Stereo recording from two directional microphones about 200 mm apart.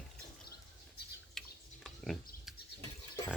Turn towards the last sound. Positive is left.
turn(degrees=15)  # may be behind; listen again after turning